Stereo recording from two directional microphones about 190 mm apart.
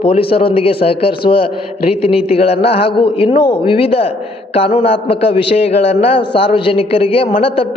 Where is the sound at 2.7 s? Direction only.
30° left (ahead or behind).